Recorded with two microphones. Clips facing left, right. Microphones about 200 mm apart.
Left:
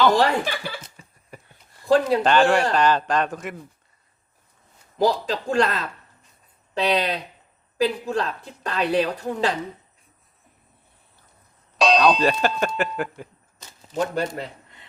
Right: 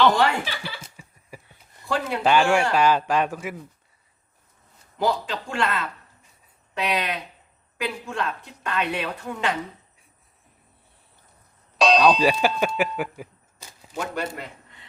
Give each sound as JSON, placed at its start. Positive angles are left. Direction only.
{"t": 0.2, "sound": "speech", "side_deg": 45}
{"t": 1.3, "sound": "a sound", "side_deg": -10}
{"t": 1.9, "sound": "speech", "side_deg": 35}
{"t": 2.2, "sound": "a man's voice", "side_deg": -10}
{"t": 4.9, "sound": "speech", "side_deg": 40}
{"t": 11.8, "sound": "clang", "side_deg": 0}
{"t": 13.9, "sound": "speech", "side_deg": 35}